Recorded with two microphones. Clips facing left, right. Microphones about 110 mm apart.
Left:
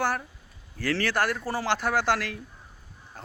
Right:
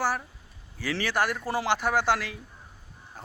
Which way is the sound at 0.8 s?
15° right (ahead or behind).